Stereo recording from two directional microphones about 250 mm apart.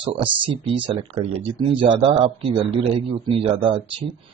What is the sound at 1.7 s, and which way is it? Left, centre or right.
Speech, right.